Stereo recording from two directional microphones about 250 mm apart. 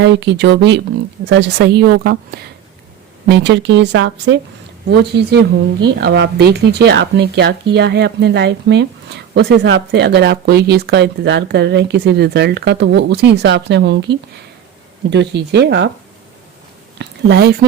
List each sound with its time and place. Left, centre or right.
0.0 s speech: right
15.1 s speech: right
17.0 s speech: right